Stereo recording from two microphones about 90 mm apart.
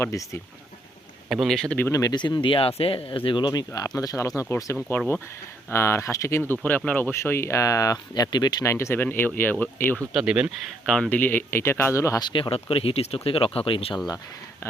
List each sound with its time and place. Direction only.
0.0 s speech: 35° left (ahead or behind)
1.3 s speech: centre (ahead or behind)
1.9 s speech: 40° left (ahead or behind)
2.1 s speech: 55° left (ahead or behind)
3.8 s speech: 45° left (ahead or behind)
4.9 s speech: 20° left (ahead or behind)
6.5 s speech: 20° left (ahead or behind)
7.1 s speech: 30° left (ahead or behind); by 8.6 s 50° left (ahead or behind)
8.6 s speech: 30° left (ahead or behind)
10.1 s speech: 5° right (ahead or behind)
10.8 s speech: 10° left (ahead or behind)
11.2 s speech: 20° left (ahead or behind)
12.2 s speech: 70° left (ahead or behind)